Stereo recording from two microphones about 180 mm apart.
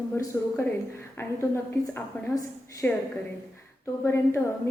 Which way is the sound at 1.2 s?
15° left (ahead or behind).